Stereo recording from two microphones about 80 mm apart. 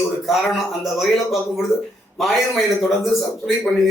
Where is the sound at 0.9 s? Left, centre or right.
Centre.